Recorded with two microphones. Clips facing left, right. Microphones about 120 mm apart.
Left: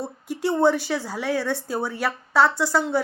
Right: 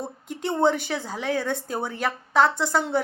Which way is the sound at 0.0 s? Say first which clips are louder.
Left 4 dB; 20° right (ahead or behind).